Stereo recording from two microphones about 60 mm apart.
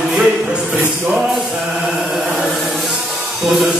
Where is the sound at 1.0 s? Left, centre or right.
Right.